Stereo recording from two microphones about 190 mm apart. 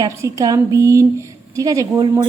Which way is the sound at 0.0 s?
15° right (ahead or behind).